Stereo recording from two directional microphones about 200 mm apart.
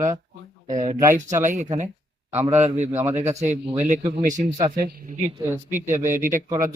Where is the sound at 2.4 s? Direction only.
10° right (ahead or behind).